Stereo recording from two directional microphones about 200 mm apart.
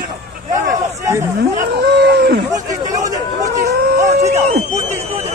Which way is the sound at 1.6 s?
55° right (ahead or behind).